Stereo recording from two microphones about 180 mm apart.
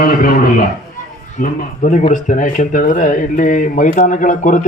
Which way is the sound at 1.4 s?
40° left (ahead or behind).